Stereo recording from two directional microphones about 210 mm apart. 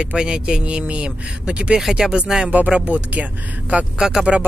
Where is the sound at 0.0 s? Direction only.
5° right (ahead or behind).